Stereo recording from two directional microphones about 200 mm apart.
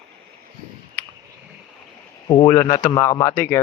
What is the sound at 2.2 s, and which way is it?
A man's voice, 25° left (ahead or behind).